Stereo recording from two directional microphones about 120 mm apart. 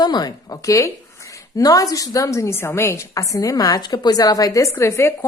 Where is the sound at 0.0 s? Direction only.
35° left (ahead or behind).